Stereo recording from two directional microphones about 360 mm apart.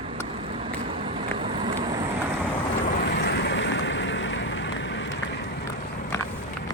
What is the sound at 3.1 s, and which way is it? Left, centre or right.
Boat, left.